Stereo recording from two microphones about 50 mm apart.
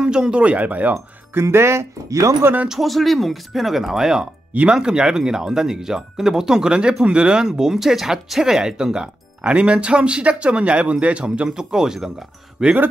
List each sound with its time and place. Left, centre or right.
0.0 s speech: centre
0.4 s speech: right
1.3 s speech: right
2.7 s speech: centre